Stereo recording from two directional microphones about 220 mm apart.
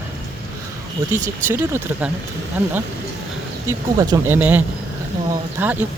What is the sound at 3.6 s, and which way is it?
Speech, 15° right (ahead or behind).